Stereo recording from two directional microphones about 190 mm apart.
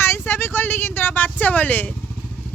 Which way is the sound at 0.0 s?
10° left (ahead or behind).